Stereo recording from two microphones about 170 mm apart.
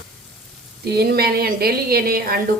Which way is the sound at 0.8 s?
70° right (ahead or behind).